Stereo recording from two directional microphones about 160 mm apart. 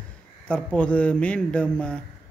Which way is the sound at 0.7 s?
10° left (ahead or behind).